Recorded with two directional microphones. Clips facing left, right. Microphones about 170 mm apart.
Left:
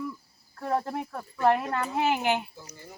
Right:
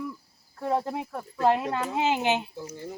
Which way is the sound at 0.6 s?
10° right (ahead or behind).